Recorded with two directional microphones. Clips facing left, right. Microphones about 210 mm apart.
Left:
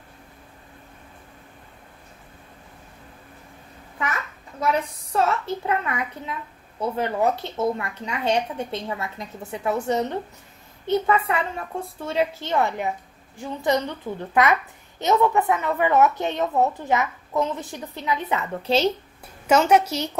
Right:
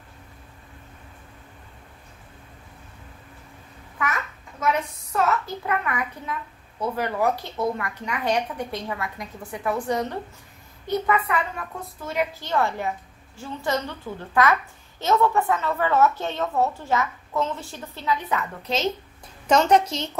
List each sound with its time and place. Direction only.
5.1 s a woman's voice: 30° left (ahead or behind)
19.4 s a woman's voice: 10° left (ahead or behind)